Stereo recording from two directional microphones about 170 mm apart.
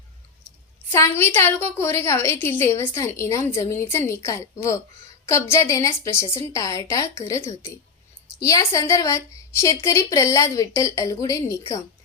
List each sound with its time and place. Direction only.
0.9 s a woman's voice: 15° left (ahead or behind)